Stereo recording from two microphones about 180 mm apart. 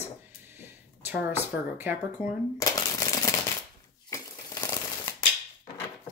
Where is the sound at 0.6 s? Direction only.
10° right (ahead or behind).